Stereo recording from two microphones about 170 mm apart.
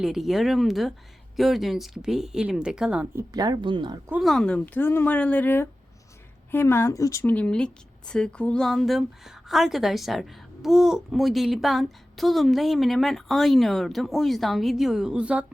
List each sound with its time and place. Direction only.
0.0 s speech: centre (ahead or behind)
3.3 s speech: 25° right (ahead or behind)
4.1 s speech: centre (ahead or behind)